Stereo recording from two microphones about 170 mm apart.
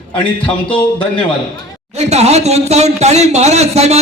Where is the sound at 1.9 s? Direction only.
40° right (ahead or behind).